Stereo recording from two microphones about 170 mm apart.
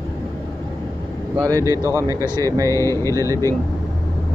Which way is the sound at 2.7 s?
15° left (ahead or behind).